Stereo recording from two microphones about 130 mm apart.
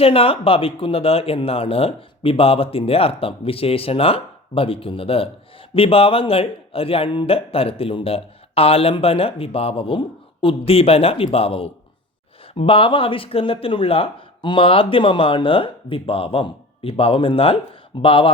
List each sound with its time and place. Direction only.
0.0 s speech: 45° left (ahead or behind)